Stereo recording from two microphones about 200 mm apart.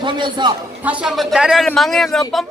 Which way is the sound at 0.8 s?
5° right (ahead or behind).